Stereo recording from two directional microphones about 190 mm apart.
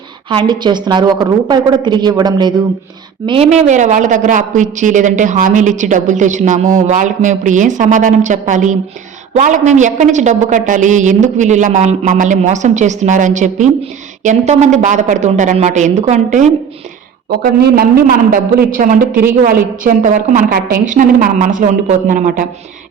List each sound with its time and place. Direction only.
0.3 s a woman's voice: 25° right (ahead or behind)
17.2 s a man's voice: 55° right (ahead or behind)